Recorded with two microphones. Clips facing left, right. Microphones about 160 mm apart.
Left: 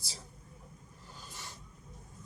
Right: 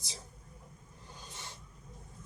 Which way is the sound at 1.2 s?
20° right (ahead or behind).